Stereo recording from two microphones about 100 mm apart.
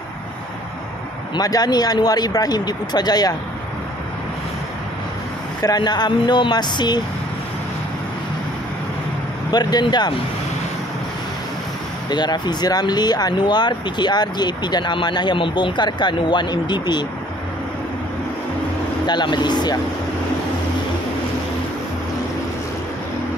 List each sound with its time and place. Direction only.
1.3 s speech: 40° left (ahead or behind)
5.6 s speech: 40° left (ahead or behind)
9.5 s speech: 45° left (ahead or behind)
12.1 s speech: 45° left (ahead or behind)
19.0 s speech: 45° left (ahead or behind)